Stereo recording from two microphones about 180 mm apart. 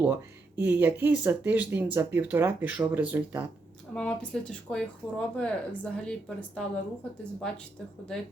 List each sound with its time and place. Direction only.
0.0 s speech: 10° right (ahead or behind)
3.9 s speech: 5° left (ahead or behind)